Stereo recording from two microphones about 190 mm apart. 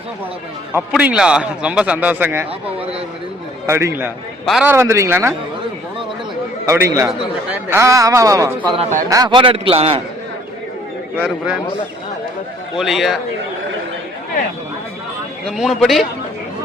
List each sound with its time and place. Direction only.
0.7 s speech: 5° right (ahead or behind)
3.7 s speech: 15° right (ahead or behind)
4.4 s a man's voice: centre (ahead or behind)
4.7 s speech: 15° right (ahead or behind)
6.7 s speech: 15° right (ahead or behind)
8.7 s a man's voice: 35° right (ahead or behind)
9.0 s a man's voice: 20° right (ahead or behind)
11.2 s a man's voice: 5° right (ahead or behind)
12.7 s a man's voice: centre (ahead or behind)
15.4 s a man's voice: centre (ahead or behind)